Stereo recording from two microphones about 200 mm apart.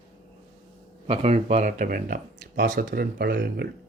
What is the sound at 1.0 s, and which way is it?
A man's voice, 30° right (ahead or behind).